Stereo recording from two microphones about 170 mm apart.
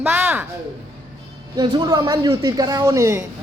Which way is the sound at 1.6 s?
25° right (ahead or behind).